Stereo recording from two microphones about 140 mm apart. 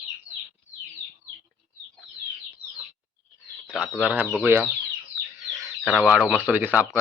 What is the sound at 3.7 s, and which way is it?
Speech, centre (ahead or behind).